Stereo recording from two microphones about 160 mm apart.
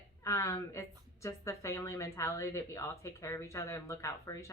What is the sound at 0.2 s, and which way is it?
A woman's voice, 20° left (ahead or behind).